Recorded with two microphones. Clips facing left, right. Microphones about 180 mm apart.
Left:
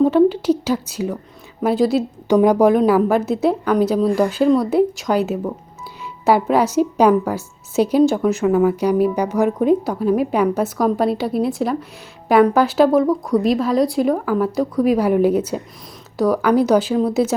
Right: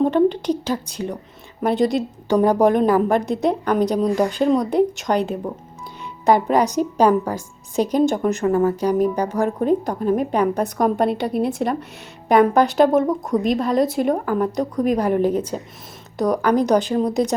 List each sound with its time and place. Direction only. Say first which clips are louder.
0.0 s a sound: left 3 dB; 5° left (ahead or behind)
0.6 s a woman's voice: left 3 dB; 5° left (ahead or behind)
13.1 s a woman's voice: left 3 dB; 20° right (ahead or behind)
13.4 s a woman's voice: left 2 dB; centre (ahead or behind)